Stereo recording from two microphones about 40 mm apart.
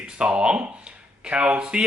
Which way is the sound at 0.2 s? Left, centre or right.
Right.